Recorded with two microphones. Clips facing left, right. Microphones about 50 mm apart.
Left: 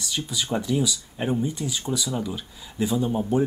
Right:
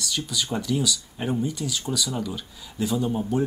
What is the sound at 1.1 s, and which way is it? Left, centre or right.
Speech, centre.